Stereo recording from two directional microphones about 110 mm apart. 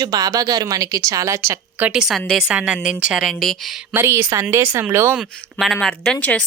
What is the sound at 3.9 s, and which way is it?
Speech, 20° right (ahead or behind).